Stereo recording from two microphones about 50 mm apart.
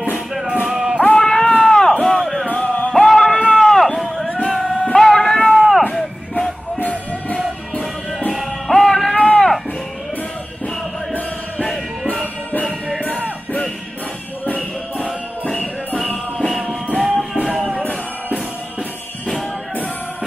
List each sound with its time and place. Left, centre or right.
0.7 s music: centre
1.1 s a sound: centre
2.0 s music: centre
2.5 s music: left
2.9 s music: centre
3.5 s run: centre
4.5 s music: centre
5.5 s a sound: centre
6.8 s music: left
8.4 s music: centre
9.1 s a sound: centre
17.0 s music: centre